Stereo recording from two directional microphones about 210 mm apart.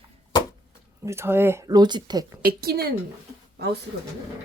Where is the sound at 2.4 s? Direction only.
45° right (ahead or behind).